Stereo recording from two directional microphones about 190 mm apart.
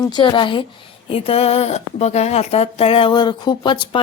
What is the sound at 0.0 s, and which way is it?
Speech, 25° left (ahead or behind).